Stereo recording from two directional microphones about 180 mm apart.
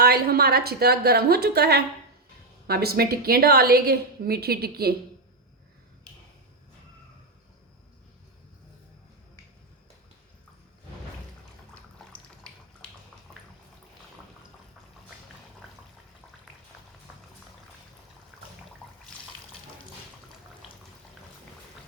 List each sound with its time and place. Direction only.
0.0 s a woman's voice: 60° right (ahead or behind)
19.1 s water: 5° left (ahead or behind)